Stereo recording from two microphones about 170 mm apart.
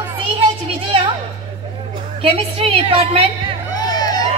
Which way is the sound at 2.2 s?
35° right (ahead or behind).